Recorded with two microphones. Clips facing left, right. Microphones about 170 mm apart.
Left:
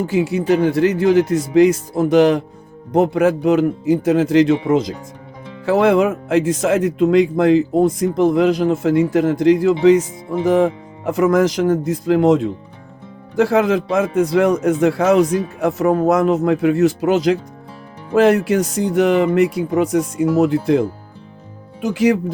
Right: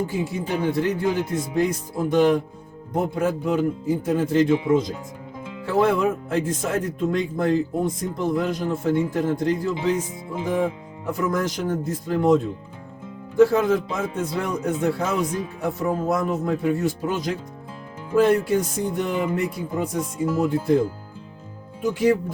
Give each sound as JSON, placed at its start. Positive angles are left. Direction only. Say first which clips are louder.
{"t": 0.0, "sound": "a man's voice", "louder": "left 8 dB", "side_deg": 80}